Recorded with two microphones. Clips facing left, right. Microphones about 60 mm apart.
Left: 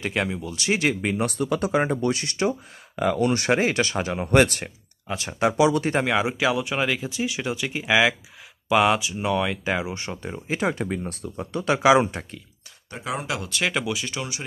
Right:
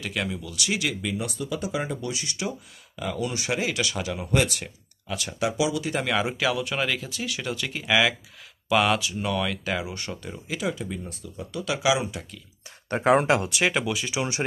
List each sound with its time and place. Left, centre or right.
0.0 s speech: left
4.3 s speech: left
5.0 s speech: left
5.6 s speech: left
6.0 s speech: centre
10.7 s speech: left
12.9 s speech: right
13.5 s speech: centre